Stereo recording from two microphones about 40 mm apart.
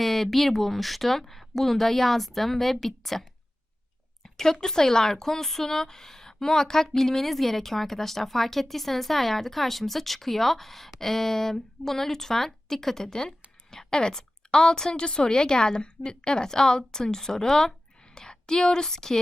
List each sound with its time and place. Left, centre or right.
0.0 s speech: centre
4.2 s a sound: centre
4.6 s a woman's voice: centre